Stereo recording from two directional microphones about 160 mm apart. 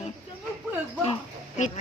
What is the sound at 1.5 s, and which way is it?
Speech, 50° left (ahead or behind).